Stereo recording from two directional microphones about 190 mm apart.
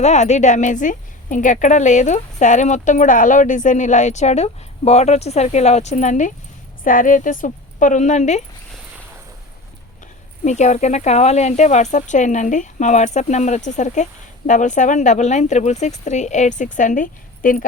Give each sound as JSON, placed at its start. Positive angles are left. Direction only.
{"t": 0.0, "sound": "speech", "side_deg": 35}
{"t": 10.4, "sound": "speech", "side_deg": 40}